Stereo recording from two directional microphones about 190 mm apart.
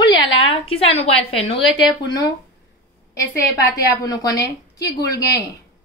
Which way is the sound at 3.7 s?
20° left (ahead or behind).